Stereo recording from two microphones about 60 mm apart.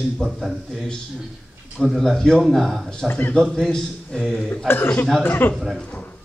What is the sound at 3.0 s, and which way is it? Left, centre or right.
Speech, left.